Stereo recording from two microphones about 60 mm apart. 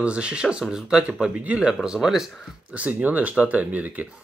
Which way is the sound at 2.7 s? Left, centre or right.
Right.